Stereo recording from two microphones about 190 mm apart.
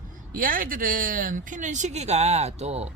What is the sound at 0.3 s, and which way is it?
Speech, 45° right (ahead or behind).